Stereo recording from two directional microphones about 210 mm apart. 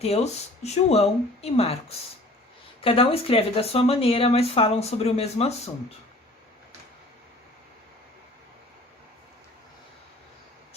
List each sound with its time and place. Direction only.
0.0 s speech: 30° left (ahead or behind)
2.8 s speech: 25° left (ahead or behind)